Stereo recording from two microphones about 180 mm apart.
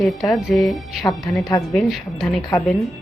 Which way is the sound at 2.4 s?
20° left (ahead or behind).